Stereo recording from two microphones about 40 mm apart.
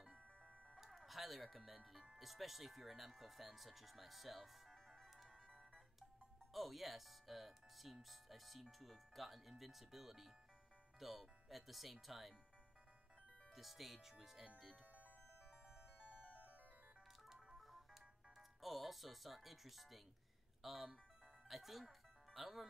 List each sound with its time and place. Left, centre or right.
0.7 s music: centre
2.1 s speech: centre
13.6 s speech: centre
15.7 s music: right
17.6 s telephone: centre
18.6 s speech: centre